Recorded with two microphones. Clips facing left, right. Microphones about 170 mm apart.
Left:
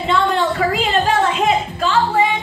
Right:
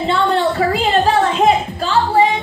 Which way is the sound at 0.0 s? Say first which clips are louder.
Right 2 dB; 35° right (ahead or behind).